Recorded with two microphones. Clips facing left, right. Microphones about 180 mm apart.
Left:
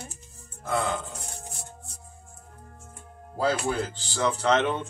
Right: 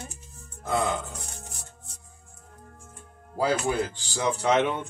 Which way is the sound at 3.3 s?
15° right (ahead or behind).